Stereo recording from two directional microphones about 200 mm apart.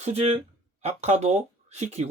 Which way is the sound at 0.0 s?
30° right (ahead or behind).